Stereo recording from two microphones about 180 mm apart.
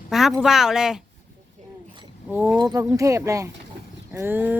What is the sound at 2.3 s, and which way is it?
Speech, 10° right (ahead or behind).